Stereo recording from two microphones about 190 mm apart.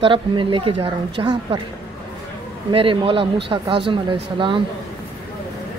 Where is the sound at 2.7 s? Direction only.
30° right (ahead or behind).